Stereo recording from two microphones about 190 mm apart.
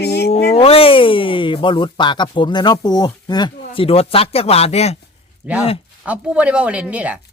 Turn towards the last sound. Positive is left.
turn(degrees=-5)  # may be behind; listen again after turning